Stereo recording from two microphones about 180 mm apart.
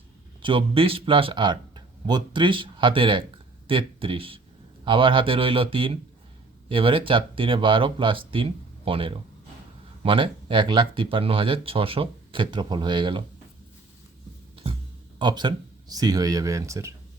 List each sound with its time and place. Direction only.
0.4 s speech: 30° right (ahead or behind)
14.5 s music: 30° right (ahead or behind)
15.2 s speech: 25° right (ahead or behind)